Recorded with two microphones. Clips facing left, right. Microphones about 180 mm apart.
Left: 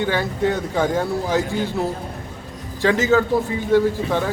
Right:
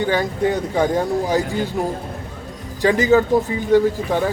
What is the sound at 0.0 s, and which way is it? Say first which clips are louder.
Speech: right 2 dB; 15° right (ahead or behind).